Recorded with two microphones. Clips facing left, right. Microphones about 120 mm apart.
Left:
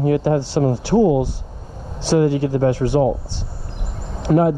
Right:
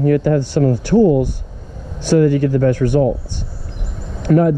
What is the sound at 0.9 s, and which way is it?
Speech, 10° left (ahead or behind).